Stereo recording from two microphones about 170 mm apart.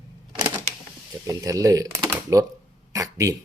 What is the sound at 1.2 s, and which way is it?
Speech, 20° right (ahead or behind).